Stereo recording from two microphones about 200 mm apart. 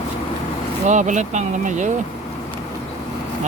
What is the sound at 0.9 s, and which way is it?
Speech, 40° right (ahead or behind).